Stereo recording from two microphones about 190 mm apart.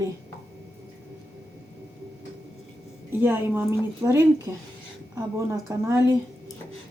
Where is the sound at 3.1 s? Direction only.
10° right (ahead or behind).